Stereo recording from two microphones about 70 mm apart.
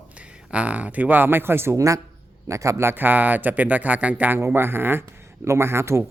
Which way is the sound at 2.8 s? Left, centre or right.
Right.